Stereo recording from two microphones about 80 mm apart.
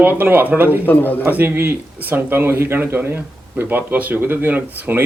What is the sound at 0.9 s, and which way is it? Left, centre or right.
Speech, left.